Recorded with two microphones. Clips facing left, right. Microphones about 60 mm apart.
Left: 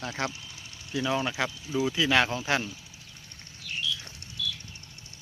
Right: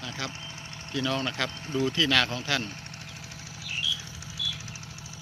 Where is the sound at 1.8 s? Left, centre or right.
Centre.